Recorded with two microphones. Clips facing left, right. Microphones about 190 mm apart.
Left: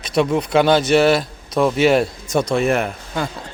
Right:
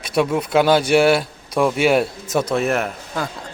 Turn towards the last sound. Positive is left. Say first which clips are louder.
# left 1 dB
turn(degrees=0)  # may be behind; listen again after turning